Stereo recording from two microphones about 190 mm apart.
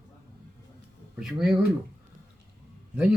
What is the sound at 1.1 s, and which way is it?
Speech, 5° right (ahead or behind).